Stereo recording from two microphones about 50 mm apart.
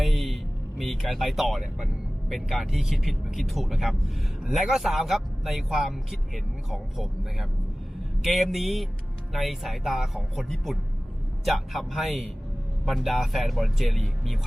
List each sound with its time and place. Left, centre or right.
0.0 s music: centre
0.8 s speech: centre